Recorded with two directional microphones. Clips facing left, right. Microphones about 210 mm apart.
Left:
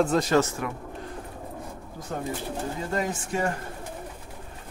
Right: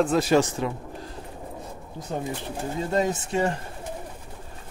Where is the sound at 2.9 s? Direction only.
25° right (ahead or behind).